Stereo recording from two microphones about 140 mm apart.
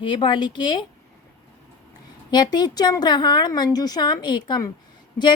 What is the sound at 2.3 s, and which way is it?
A woman's voice, 30° left (ahead or behind).